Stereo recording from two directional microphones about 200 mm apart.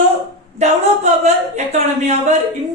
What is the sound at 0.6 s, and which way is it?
Speech, 35° right (ahead or behind).